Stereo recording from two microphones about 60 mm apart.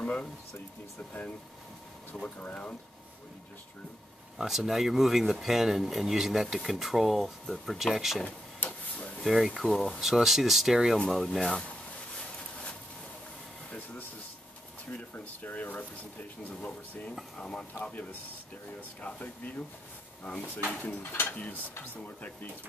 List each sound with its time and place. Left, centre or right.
0.0 s speech: centre
2.2 s speech: left
4.4 s speech: centre
8.2 s tick-tock: left
9.2 s speech: centre
11.2 s speech: centre
15.1 s speech: left
18.9 s speech: left